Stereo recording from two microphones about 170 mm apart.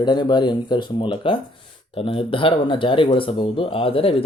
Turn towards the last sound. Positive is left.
turn(degrees=35)  # may be behind; listen again after turning